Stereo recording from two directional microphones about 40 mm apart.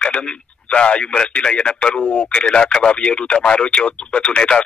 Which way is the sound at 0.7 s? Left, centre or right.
Left.